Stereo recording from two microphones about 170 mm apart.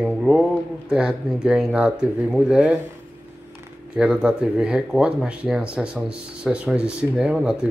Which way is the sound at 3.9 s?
5° right (ahead or behind).